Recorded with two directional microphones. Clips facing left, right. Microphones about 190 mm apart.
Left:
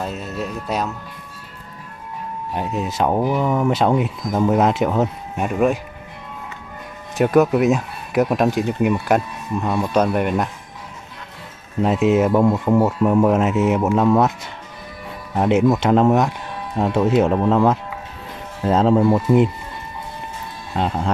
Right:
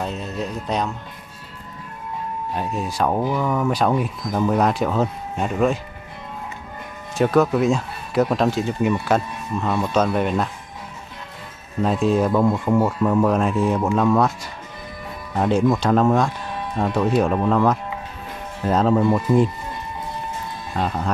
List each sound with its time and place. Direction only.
0.0 s speech: 5° left (ahead or behind)
2.5 s speech: 20° left (ahead or behind)
7.2 s speech: 15° left (ahead or behind)
11.8 s speech: 20° left (ahead or behind)
20.7 s speech: 25° left (ahead or behind)